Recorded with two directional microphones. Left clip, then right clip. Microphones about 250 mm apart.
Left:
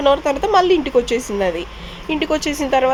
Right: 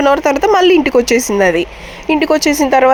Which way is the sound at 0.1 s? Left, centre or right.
Right.